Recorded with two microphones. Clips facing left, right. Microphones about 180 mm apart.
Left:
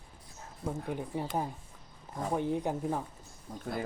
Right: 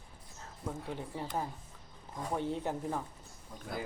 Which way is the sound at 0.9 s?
15° left (ahead or behind).